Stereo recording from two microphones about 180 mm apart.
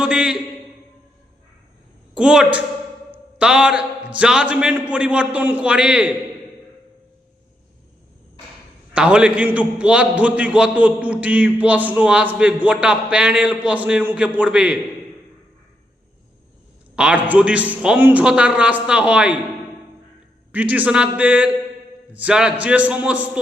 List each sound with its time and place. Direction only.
0.0 s a sound: 5° right (ahead or behind)
2.1 s a woman's voice: 5° right (ahead or behind)
3.1 s a sound: 5° right (ahead or behind)
4.2 s a man's voice: 5° right (ahead or behind)
9.0 s a man's voice: 5° right (ahead or behind)
16.9 s a man's voice: 5° right (ahead or behind)
20.5 s a man's voice: 10° right (ahead or behind)